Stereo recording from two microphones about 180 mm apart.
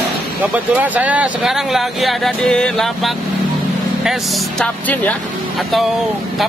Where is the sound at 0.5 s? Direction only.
10° right (ahead or behind).